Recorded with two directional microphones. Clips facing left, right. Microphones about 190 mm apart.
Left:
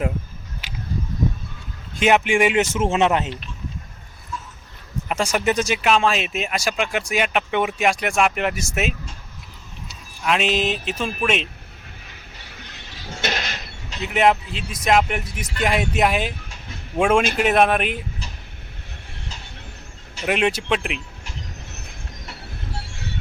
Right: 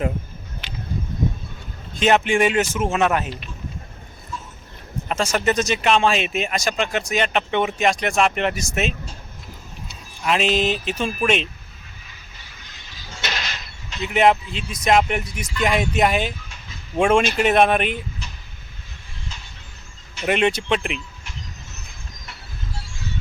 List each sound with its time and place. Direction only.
2.0 s speech: 10° left (ahead or behind)
5.0 s speech: 15° left (ahead or behind)
10.2 s speech: centre (ahead or behind)
12.0 s a sound: 65° left (ahead or behind)
14.0 s speech: centre (ahead or behind)
16.4 s a sound: 60° left (ahead or behind)
16.9 s speech: 5° left (ahead or behind)
20.2 s speech: 5° left (ahead or behind)
21.7 s train: 65° left (ahead or behind)